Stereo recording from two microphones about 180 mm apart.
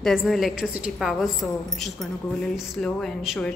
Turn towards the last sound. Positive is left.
turn(degrees=0)  # may be behind; listen again after turning